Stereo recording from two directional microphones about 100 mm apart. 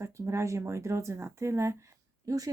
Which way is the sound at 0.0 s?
30° right (ahead or behind).